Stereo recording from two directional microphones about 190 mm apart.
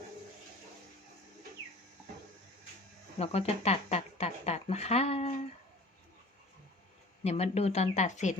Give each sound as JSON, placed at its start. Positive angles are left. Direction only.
{"t": 3.2, "sound": "speech", "side_deg": 30}
{"t": 7.3, "sound": "speech", "side_deg": 35}